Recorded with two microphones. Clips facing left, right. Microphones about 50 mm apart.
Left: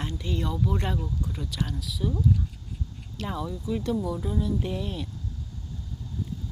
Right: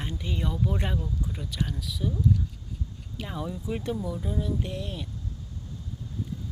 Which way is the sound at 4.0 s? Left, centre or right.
Centre.